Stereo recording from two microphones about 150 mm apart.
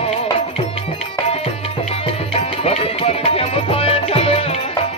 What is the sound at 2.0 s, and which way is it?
Music, 40° left (ahead or behind).